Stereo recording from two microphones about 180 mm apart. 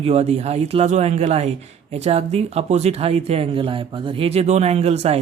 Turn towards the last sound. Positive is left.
turn(degrees=-35)  # may be behind; listen again after turning